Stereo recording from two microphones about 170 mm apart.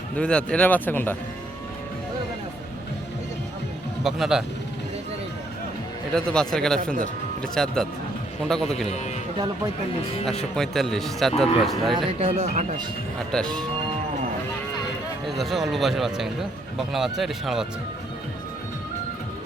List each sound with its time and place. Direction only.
0.2 s a man's voice: 5° left (ahead or behind)
4.0 s a man's voice: centre (ahead or behind)
6.1 s a man's voice: 5° left (ahead or behind)
10.5 s a man's voice: centre (ahead or behind)
12.2 s speech: 40° right (ahead or behind)
13.3 s a man's voice: 5° left (ahead or behind)
15.3 s a man's voice: centre (ahead or behind)